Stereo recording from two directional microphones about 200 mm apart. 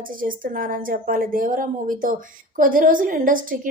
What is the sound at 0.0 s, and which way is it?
A woman's voice, 45° right (ahead or behind).